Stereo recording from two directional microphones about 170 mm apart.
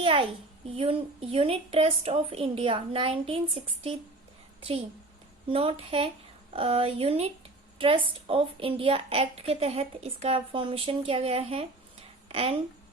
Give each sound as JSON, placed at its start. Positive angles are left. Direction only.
{"t": 0.0, "sound": "a sound", "side_deg": -35}
{"t": 0.8, "sound": "a woman's voice", "side_deg": -35}
{"t": 5.5, "sound": "a woman's voice", "side_deg": -35}